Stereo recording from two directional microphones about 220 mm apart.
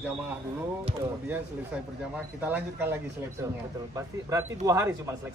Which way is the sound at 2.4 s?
10° right (ahead or behind).